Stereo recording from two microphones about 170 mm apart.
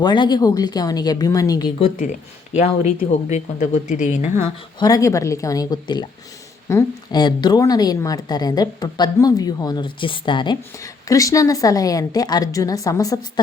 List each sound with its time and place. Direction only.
0.0 s a woman's voice: 25° left (ahead or behind)
2.6 s speech: 40° left (ahead or behind)
4.4 s a woman's voice: 20° left (ahead or behind)